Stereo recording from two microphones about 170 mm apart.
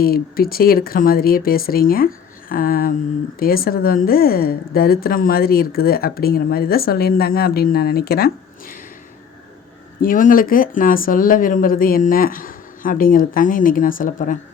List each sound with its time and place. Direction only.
0.0 s a woman's voice: 60° left (ahead or behind)
10.0 s a woman's voice: 55° left (ahead or behind)